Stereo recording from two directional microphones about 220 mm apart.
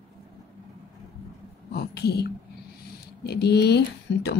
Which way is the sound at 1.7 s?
50° left (ahead or behind).